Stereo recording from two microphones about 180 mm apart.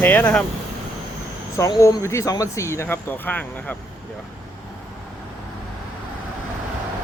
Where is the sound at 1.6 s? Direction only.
20° left (ahead or behind).